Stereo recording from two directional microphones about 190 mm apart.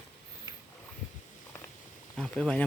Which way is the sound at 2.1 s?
5° left (ahead or behind).